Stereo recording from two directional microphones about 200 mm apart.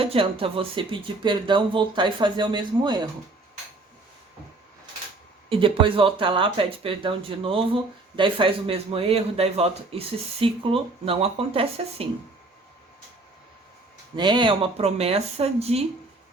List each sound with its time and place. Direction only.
0.0 s speech: 30° right (ahead or behind)
5.5 s speech: 25° right (ahead or behind)
14.2 s speech: 25° right (ahead or behind)